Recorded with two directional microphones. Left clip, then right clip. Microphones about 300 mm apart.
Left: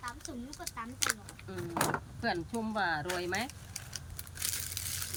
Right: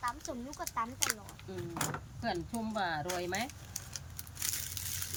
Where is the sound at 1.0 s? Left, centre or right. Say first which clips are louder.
Left 4 dB; centre.